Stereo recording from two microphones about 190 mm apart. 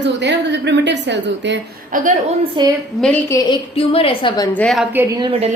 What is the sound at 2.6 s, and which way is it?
Speech, 25° right (ahead or behind).